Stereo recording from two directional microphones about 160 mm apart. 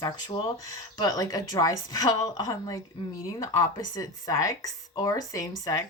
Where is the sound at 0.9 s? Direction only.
20° left (ahead or behind).